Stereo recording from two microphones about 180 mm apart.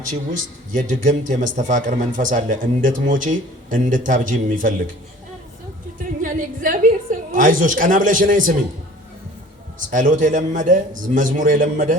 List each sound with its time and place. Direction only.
0.3 s a man's voice: 45° right (ahead or behind)
6.0 s a woman's voice: 45° right (ahead or behind)
9.7 s a man's voice: 45° right (ahead or behind)